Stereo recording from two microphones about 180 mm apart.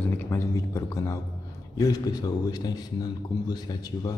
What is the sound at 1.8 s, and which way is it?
A man's voice, 20° left (ahead or behind).